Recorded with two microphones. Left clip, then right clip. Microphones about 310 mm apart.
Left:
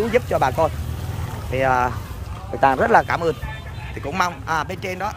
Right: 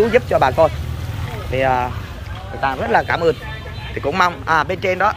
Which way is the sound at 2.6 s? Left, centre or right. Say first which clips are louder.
Left 4 dB; left.